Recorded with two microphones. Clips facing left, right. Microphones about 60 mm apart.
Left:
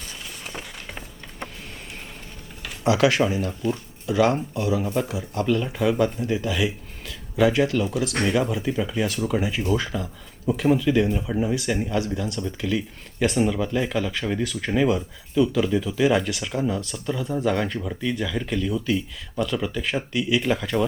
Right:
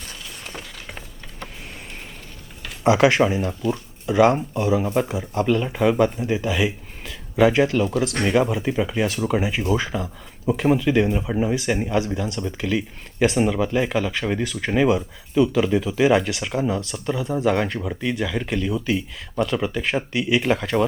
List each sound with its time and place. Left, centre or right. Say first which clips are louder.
0.4 s a sound: even; centre
2.8 s speech: right 3 dB; right; by 14.3 s centre
14.3 s speech: right 2 dB; right